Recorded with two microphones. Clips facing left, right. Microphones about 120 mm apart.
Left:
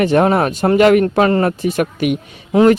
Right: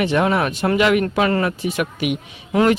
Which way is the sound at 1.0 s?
35° left (ahead or behind).